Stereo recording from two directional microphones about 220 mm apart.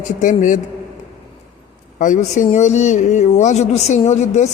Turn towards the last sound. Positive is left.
turn(degrees=30)  # may be behind; listen again after turning